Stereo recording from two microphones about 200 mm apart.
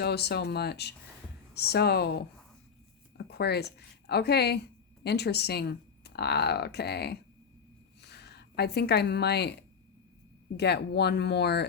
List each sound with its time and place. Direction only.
0.0 s speech: 55° left (ahead or behind)
10.6 s speech: 55° left (ahead or behind)